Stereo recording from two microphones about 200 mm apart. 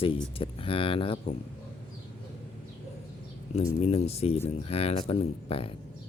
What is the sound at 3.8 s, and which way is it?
Speech, 30° left (ahead or behind).